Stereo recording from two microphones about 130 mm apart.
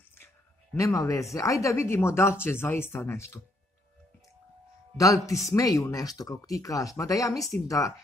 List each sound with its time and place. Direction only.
0.7 s speech: 25° left (ahead or behind)
4.9 s speech: 25° left (ahead or behind)